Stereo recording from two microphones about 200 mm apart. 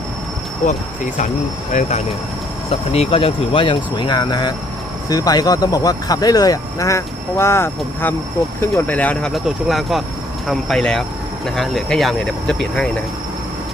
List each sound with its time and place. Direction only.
0.7 s speech: 35° left (ahead or behind); by 12.9 s 5° left (ahead or behind)